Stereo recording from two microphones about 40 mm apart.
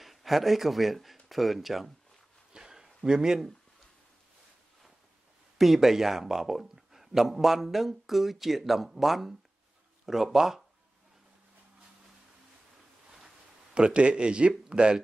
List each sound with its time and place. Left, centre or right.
0.0 s speech: centre
2.5 s a sound: centre
5.6 s speech: centre
13.7 s speech: right